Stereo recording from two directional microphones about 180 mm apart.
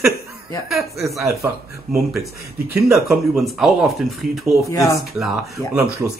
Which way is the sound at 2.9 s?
Centre (ahead or behind).